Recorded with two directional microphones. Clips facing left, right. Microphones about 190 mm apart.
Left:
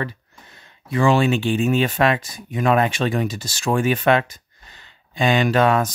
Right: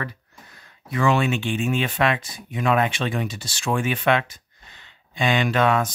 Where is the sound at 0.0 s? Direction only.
25° left (ahead or behind).